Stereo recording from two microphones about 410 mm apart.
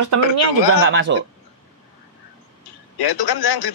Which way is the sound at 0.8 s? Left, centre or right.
Right.